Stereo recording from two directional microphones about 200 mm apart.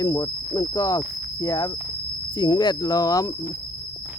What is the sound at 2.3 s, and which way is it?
Cricket, 20° left (ahead or behind).